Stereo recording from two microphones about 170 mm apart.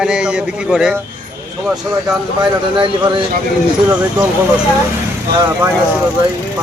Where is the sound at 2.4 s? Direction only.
30° right (ahead or behind).